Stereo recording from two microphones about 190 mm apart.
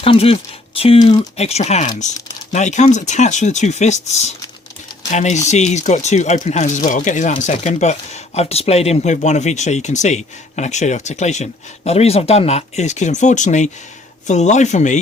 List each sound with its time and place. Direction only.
0.0 s speech: 30° left (ahead or behind)